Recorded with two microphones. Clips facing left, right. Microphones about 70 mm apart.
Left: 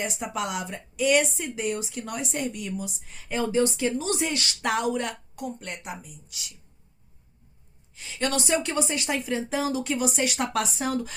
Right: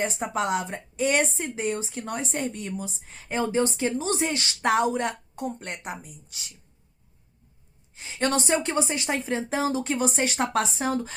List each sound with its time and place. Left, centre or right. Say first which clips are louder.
0.0 s a woman's voice: right 3 dB; right
7.9 s a woman's voice: right 2 dB; right